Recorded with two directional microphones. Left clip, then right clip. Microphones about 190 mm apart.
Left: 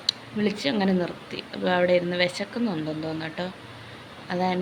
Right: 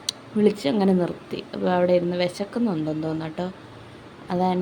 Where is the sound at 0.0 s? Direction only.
30° right (ahead or behind).